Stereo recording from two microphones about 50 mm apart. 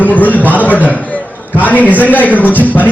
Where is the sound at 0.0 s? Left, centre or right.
Left.